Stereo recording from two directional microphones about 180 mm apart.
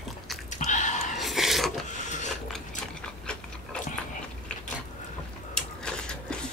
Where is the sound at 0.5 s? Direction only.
40° left (ahead or behind).